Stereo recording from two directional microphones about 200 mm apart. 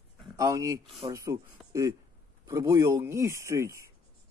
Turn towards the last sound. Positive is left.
turn(degrees=-15)  # may be behind; listen again after turning